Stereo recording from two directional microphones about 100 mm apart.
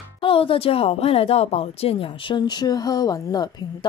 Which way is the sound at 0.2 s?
65° left (ahead or behind).